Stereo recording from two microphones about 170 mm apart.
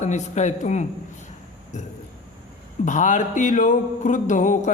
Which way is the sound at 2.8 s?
50° left (ahead or behind).